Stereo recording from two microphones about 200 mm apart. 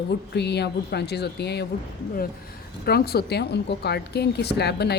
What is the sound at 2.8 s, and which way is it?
A woman's voice, 50° left (ahead or behind).